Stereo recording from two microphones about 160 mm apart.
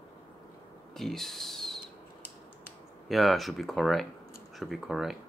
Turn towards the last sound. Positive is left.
turn(degrees=0)  # may be behind; listen again after turning